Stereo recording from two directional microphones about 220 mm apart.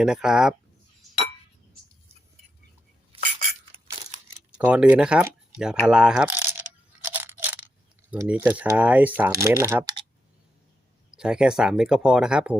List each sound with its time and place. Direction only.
0.0 s speech: 5° right (ahead or behind)
3.1 s chink: 25° right (ahead or behind)
3.7 s a sound: 25° right (ahead or behind)
4.5 s speech: 5° right (ahead or behind)
5.8 s coin: 5° right (ahead or behind)
8.1 s speech: 5° right (ahead or behind)
11.1 s speech: 5° right (ahead or behind)